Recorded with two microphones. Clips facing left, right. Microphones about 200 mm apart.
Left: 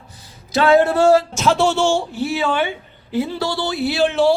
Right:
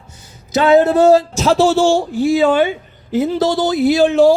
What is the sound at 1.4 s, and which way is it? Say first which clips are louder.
A man's voice: right 4 dB; 35° right (ahead or behind).